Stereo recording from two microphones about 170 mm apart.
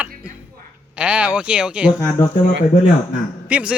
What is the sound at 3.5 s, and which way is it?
Speech, 10° right (ahead or behind).